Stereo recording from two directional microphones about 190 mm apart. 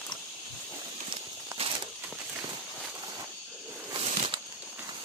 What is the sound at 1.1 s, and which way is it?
Walk, 30° right (ahead or behind).